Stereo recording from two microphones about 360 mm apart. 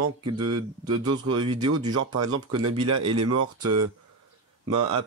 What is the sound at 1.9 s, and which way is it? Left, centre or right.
Speech, right.